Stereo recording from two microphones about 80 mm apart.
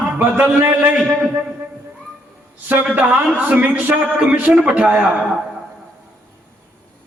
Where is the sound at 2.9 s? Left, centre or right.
Centre.